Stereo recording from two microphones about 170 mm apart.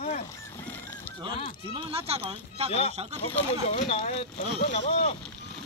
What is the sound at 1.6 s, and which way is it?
Speech, 30° right (ahead or behind).